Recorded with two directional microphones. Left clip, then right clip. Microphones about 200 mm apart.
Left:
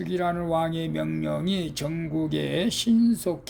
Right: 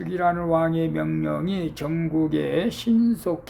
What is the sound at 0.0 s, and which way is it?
Speech, 30° left (ahead or behind).